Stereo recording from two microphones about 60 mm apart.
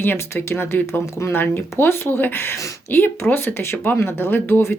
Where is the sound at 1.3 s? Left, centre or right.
Left.